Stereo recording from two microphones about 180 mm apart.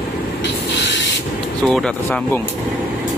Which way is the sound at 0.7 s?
75° left (ahead or behind).